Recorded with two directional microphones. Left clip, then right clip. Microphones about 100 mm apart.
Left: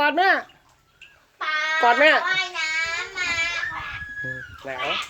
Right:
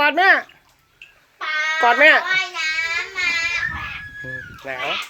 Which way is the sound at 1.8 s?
Centre (ahead or behind).